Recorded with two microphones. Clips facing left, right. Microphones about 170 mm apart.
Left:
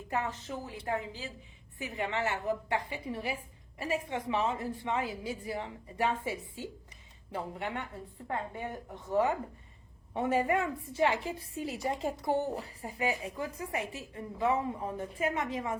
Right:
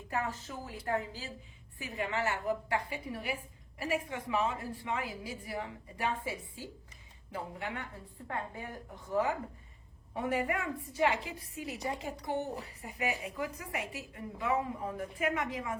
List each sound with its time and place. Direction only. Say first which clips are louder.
0.1 s a woman's voice: left 2 dB; 20° left (ahead or behind)